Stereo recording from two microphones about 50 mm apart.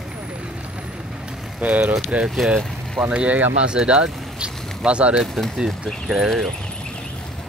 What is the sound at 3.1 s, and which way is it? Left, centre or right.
Speech, right.